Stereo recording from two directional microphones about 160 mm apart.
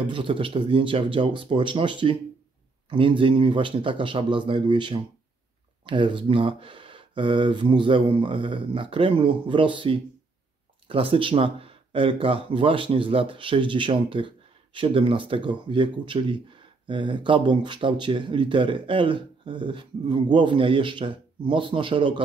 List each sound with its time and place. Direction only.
0.1 s speech: 30° right (ahead or behind)